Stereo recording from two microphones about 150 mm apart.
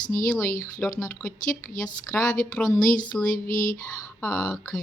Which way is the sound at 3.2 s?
65° left (ahead or behind).